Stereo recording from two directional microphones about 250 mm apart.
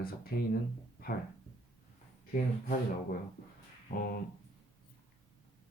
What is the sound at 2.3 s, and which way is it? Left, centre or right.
Speech, left.